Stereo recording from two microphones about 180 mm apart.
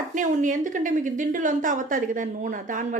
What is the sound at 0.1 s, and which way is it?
A woman's voice, 45° right (ahead or behind).